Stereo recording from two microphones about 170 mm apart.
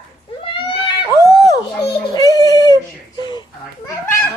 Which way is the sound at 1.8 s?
25° left (ahead or behind).